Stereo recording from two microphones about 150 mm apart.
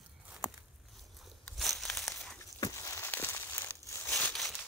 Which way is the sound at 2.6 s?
20° left (ahead or behind).